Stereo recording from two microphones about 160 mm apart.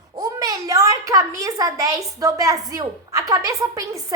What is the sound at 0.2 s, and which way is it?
A child's voice, 20° right (ahead or behind).